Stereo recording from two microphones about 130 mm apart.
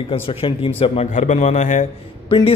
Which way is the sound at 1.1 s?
65° left (ahead or behind).